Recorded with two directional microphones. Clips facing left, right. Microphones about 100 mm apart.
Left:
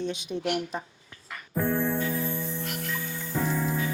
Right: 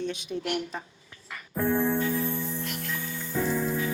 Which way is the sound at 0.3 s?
20° left (ahead or behind).